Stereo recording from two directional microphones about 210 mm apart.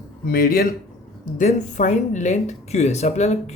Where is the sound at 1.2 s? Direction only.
35° left (ahead or behind).